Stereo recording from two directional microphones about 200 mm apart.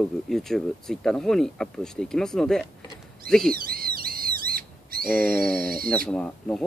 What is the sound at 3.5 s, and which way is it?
Bird, 45° right (ahead or behind).